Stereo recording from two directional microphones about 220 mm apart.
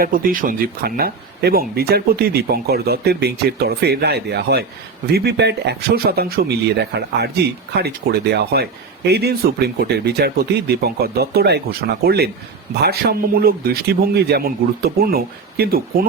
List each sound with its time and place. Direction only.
0.0 s speech: 40° right (ahead or behind)